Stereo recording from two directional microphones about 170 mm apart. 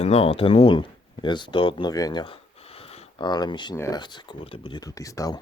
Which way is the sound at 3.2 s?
25° left (ahead or behind).